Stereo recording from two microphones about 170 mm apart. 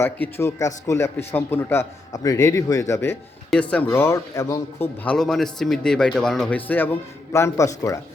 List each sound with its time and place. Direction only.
0.0 s speech: 15° left (ahead or behind)
5.0 s speech: 5° left (ahead or behind); by 7.9 s 20° left (ahead or behind)